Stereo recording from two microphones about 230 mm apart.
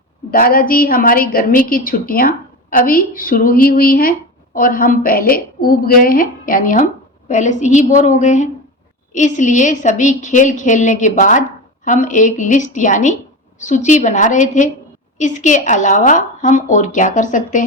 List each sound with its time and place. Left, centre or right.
0.3 s a woman's voice: left